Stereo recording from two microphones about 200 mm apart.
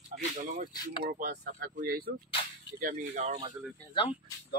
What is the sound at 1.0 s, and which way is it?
Speech, 45° right (ahead or behind).